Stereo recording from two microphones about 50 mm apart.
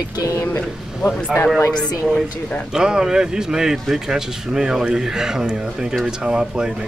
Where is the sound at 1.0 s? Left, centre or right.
Left.